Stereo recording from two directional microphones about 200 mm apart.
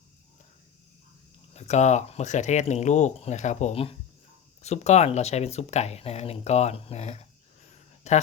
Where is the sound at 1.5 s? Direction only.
35° left (ahead or behind).